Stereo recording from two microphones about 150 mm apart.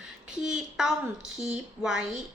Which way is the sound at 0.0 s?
5° right (ahead or behind).